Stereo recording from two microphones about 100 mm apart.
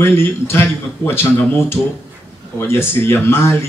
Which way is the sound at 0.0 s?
25° left (ahead or behind).